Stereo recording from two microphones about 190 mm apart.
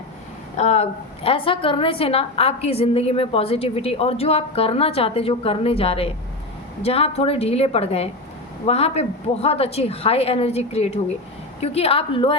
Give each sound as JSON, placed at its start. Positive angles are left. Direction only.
{"t": 0.5, "sound": "a woman's voice", "side_deg": 35}